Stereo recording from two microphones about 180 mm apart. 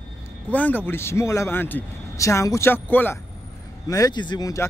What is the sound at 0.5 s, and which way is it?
Speech, 10° left (ahead or behind).